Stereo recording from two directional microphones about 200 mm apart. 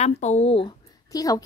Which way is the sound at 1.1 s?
15° left (ahead or behind).